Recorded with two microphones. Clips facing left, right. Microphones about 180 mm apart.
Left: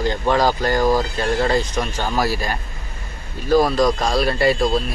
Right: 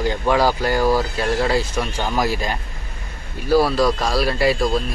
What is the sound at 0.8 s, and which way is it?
Speech, 15° left (ahead or behind).